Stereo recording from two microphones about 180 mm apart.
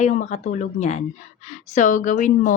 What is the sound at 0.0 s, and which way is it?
A woman's voice, 40° left (ahead or behind).